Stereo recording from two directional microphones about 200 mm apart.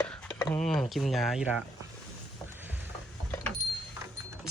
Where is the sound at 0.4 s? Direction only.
Centre (ahead or behind).